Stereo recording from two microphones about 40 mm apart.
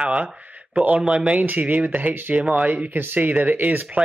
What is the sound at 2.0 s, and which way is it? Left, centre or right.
Speech, right.